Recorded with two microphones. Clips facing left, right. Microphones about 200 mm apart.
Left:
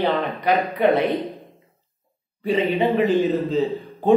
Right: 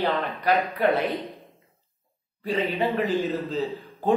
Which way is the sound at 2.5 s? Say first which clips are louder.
Left 5 dB; 20° left (ahead or behind).